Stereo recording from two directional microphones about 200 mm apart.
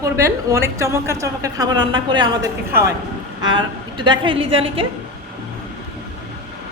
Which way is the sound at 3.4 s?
20° right (ahead or behind).